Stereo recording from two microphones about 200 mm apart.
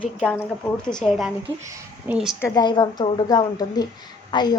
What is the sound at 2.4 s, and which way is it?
A woman's voice, 20° left (ahead or behind).